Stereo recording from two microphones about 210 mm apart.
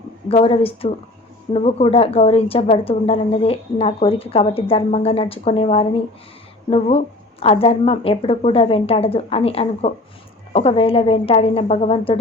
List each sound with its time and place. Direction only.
0.3 s a woman's voice: 25° left (ahead or behind)